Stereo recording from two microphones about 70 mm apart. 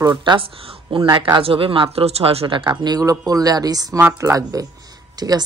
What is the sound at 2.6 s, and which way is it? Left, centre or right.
Speech, right.